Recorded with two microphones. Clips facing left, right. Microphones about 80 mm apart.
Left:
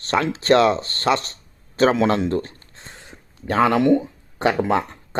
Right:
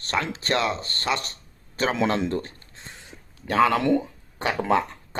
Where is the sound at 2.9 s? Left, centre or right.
Left.